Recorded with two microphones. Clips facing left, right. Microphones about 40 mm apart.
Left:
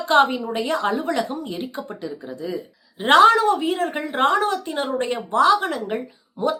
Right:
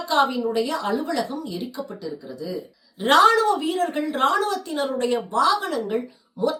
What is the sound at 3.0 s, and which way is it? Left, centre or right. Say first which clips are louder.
A woman's voice: left 2 dB; left.